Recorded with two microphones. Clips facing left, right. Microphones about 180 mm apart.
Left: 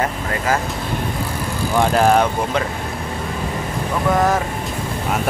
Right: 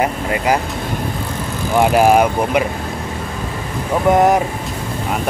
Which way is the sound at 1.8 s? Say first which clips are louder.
Right 3 dB; 15° right (ahead or behind).